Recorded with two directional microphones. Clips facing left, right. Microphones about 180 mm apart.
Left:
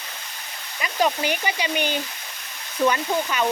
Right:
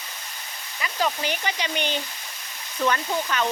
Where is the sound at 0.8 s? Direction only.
15° left (ahead or behind).